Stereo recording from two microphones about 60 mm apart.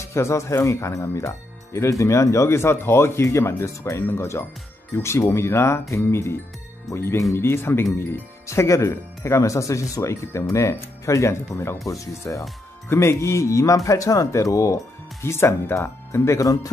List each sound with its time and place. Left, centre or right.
0.0 s speech: left
3.3 s speech: left
7.3 s speech: left
15.2 s speech: left